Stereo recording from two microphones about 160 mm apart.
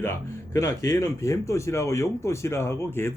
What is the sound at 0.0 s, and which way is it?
Speech, 15° left (ahead or behind).